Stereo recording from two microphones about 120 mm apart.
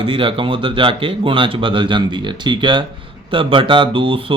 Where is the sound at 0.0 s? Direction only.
45° right (ahead or behind).